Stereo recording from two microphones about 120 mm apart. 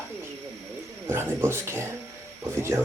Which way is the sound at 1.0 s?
20° right (ahead or behind).